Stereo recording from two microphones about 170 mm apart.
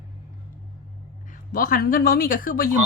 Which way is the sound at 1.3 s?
55° left (ahead or behind).